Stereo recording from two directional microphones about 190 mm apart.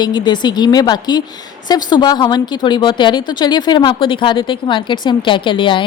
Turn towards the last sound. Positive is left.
turn(degrees=25)  # may be behind; listen again after turning